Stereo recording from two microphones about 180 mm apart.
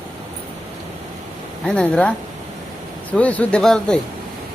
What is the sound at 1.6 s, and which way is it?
A man's voice, 5° left (ahead or behind).